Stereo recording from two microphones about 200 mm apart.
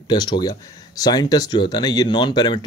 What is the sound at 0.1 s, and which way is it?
Speech, 20° left (ahead or behind).